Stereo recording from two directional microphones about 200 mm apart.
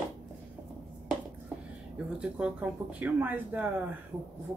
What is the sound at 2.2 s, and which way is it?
Speech, 5° right (ahead or behind).